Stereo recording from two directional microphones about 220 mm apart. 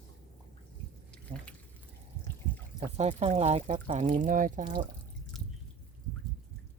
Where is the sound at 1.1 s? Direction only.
5° left (ahead or behind).